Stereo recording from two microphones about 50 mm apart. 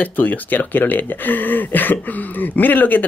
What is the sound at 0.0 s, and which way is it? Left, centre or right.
Speech, left.